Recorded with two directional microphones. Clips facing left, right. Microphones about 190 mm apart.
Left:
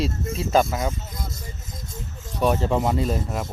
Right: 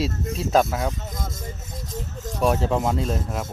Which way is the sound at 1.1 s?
50° right (ahead or behind).